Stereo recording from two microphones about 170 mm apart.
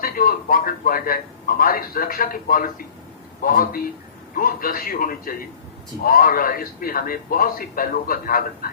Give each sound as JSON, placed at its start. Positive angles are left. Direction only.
{"t": 0.0, "sound": "a man's voice", "side_deg": 55}